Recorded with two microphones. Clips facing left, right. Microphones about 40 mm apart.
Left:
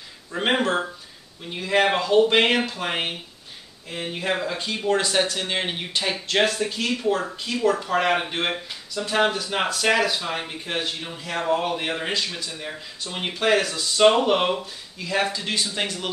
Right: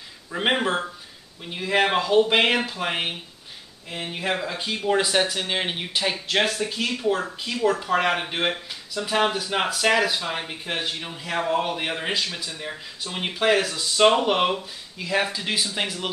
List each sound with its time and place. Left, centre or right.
0.3 s speech: centre